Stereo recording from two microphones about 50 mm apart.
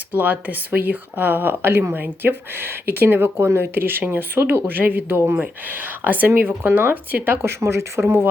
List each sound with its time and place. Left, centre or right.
0.1 s speech: right
7.4 s speech: right